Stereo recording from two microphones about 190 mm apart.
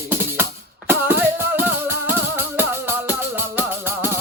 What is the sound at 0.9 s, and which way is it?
Music, 10° right (ahead or behind).